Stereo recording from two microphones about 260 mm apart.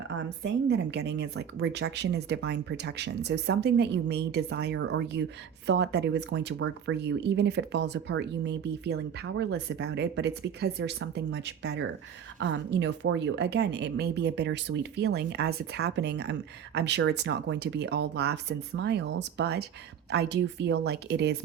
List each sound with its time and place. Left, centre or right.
0.2 s speech: right